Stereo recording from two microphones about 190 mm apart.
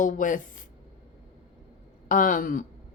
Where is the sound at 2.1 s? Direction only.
45° left (ahead or behind).